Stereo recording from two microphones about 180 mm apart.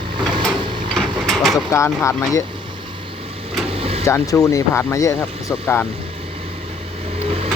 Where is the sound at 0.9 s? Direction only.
Centre (ahead or behind).